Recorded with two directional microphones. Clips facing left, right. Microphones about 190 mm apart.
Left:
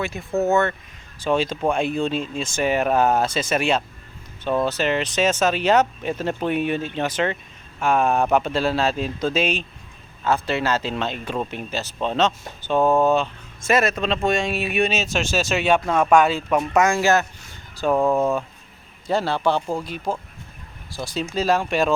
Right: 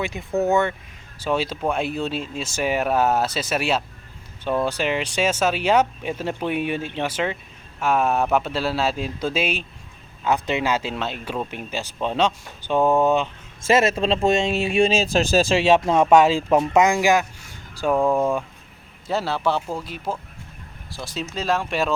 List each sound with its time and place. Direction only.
0.0 s speech: 15° right (ahead or behind)
17.9 s speech: 5° left (ahead or behind)